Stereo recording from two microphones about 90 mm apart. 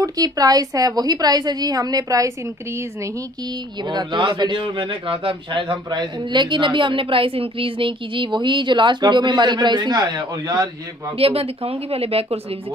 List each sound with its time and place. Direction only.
0.0 s a woman's voice: 45° right (ahead or behind)
3.8 s a man's voice: 55° right (ahead or behind)
11.1 s speech: 90° right